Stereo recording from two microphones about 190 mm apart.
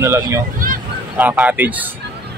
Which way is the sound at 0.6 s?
50° right (ahead or behind).